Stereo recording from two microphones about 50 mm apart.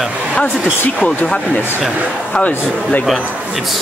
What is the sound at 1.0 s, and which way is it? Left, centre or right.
Speech, left.